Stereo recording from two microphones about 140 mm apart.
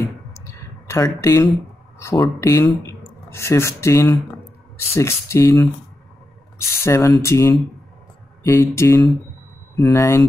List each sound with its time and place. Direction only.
0.8 s speech: 20° left (ahead or behind)
6.8 s speech: 20° left (ahead or behind)